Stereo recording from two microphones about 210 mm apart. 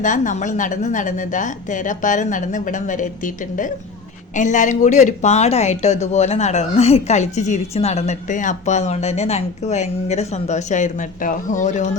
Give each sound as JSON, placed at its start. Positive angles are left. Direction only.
{"t": 0.0, "sound": "speech", "side_deg": 35}